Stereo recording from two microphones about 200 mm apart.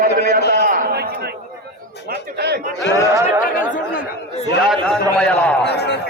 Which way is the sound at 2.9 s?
15° right (ahead or behind).